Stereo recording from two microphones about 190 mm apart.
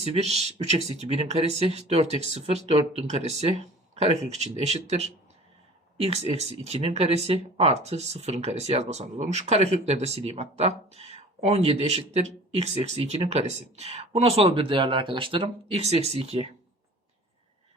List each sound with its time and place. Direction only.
0.0 s speech: 35° right (ahead or behind)